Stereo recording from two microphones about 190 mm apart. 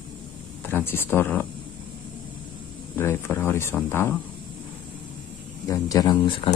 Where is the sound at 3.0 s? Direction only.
10° left (ahead or behind).